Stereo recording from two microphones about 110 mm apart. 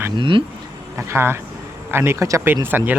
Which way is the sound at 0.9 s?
20° right (ahead or behind).